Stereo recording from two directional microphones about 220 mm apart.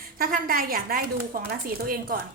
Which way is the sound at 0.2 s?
40° right (ahead or behind).